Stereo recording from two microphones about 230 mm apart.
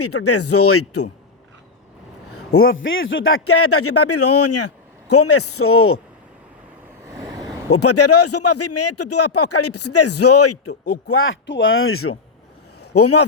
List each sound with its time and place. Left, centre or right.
0.0 s speech: left
2.3 s a man's voice: left
5.1 s a man's voice: left
7.7 s speech: left
11.1 s speech: left
12.8 s a sound: left